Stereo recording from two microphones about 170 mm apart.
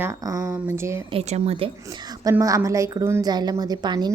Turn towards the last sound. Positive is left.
turn(degrees=-25)  # may be behind; listen again after turning